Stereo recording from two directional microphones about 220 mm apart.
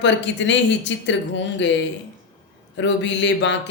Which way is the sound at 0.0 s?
55° left (ahead or behind).